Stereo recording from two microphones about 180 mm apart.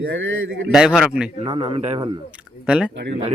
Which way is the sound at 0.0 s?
90° right.